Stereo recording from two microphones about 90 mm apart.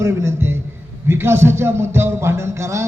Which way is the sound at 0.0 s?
30° right (ahead or behind).